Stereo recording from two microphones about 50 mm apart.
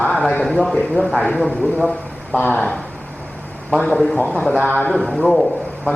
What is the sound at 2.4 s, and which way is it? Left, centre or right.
Speech, left.